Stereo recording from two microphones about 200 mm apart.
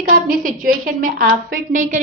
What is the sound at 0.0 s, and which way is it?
A woman's voice, 40° right (ahead or behind).